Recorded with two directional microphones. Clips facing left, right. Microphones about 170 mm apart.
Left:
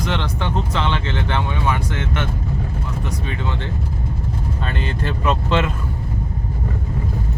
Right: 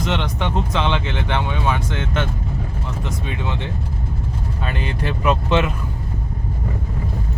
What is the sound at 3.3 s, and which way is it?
Speech, 15° right (ahead or behind).